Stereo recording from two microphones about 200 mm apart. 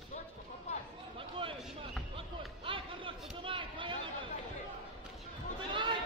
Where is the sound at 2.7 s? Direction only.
25° right (ahead or behind).